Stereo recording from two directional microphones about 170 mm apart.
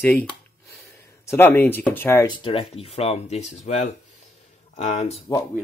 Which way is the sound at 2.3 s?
30° left (ahead or behind).